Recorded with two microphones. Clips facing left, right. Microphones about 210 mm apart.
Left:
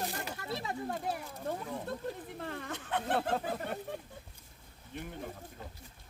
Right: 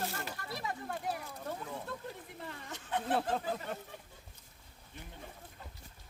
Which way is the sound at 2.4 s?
55° left (ahead or behind).